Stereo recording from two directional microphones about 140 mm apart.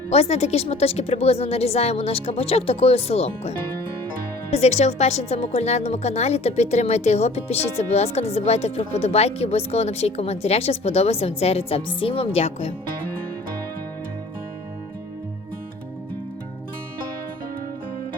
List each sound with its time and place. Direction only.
0.1 s speech: 45° left (ahead or behind)
4.5 s speech: 50° left (ahead or behind)